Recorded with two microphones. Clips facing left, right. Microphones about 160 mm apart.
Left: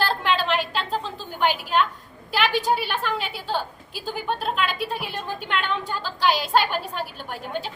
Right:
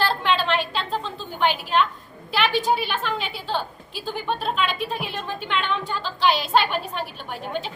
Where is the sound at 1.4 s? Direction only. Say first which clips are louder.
Right 1 dB; 5° left (ahead or behind).